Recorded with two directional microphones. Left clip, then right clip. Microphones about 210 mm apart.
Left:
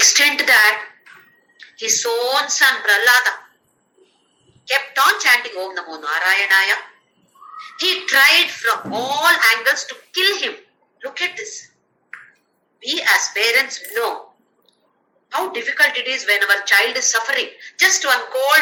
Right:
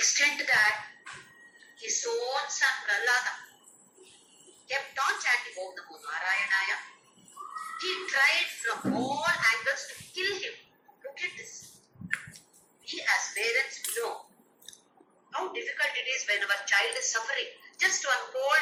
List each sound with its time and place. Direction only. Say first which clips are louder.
0.0 s a woman's voice: left 12 dB; 50° left (ahead or behind)
4.6 s a woman's voice: left 14 dB; 50° left (ahead or behind)
7.8 s a woman's voice: left 13 dB; 50° left (ahead or behind)
12.8 s a woman's voice: left 12 dB; 50° left (ahead or behind)
15.3 s a woman's voice: left 12 dB; 50° left (ahead or behind)